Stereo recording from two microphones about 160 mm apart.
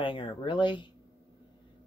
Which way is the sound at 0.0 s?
30° left (ahead or behind).